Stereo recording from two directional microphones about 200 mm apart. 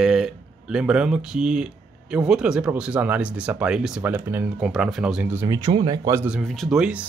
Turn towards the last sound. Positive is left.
turn(degrees=-5)  # may be behind; listen again after turning